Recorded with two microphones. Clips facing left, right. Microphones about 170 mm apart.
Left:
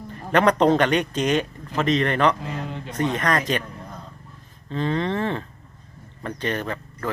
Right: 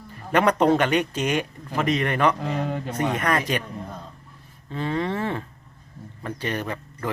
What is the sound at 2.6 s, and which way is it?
Speech, 50° right (ahead or behind).